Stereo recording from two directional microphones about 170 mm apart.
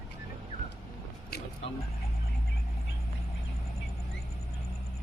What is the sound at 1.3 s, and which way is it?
Music, 70° left (ahead or behind).